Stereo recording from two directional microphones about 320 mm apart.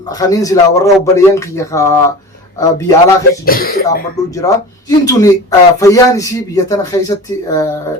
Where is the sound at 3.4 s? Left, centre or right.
Left.